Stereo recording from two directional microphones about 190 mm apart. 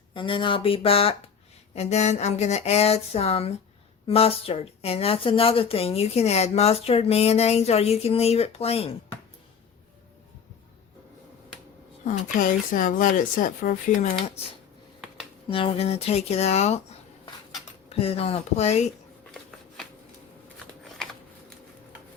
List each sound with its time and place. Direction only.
0.1 s a woman's voice: 25° left (ahead or behind)
12.0 s speech: 45° left (ahead or behind)
15.4 s a woman's voice: 30° left (ahead or behind)
17.8 s a woman's voice: 30° left (ahead or behind)